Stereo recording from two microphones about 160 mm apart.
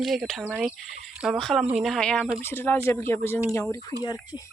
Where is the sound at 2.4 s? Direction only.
15° left (ahead or behind).